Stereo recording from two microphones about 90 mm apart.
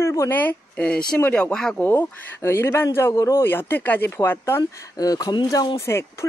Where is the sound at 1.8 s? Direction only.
25° left (ahead or behind).